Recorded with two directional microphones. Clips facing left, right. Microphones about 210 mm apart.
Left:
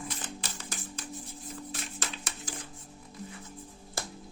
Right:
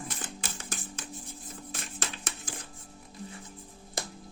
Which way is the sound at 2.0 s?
50° right (ahead or behind).